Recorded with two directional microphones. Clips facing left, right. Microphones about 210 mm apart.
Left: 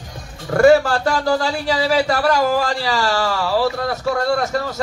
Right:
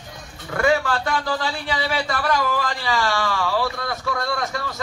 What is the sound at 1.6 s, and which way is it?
Speech, 35° left (ahead or behind).